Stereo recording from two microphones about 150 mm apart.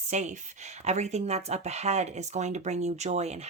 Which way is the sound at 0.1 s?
50° right (ahead or behind).